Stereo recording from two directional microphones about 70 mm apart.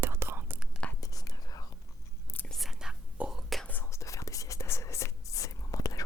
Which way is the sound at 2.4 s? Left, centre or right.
Centre.